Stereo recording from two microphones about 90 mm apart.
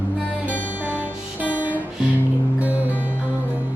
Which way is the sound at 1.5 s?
20° right (ahead or behind).